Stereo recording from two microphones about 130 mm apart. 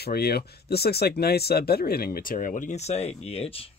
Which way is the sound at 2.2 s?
90° left.